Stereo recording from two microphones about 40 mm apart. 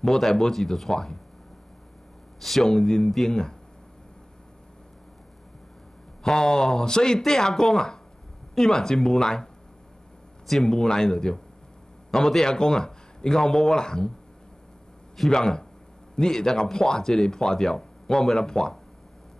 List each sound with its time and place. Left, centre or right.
0.0 s speech: centre
2.4 s speech: centre
6.3 s speech: centre
7.2 s speech: centre
15.2 s speech: centre